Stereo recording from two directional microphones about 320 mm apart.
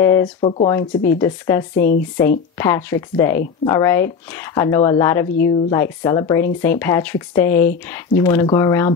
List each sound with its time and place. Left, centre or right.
0.0 s speech: centre